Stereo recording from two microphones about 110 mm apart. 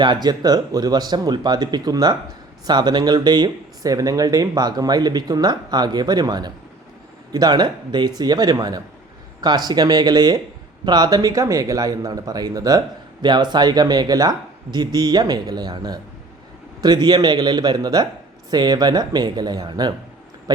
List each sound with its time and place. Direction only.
0.0 s speech: 40° right (ahead or behind)